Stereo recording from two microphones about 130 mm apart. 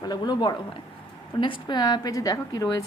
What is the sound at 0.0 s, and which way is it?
A woman's voice, 35° left (ahead or behind).